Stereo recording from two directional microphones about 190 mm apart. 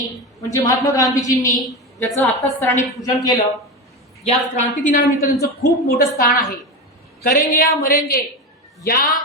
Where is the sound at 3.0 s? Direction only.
25° left (ahead or behind).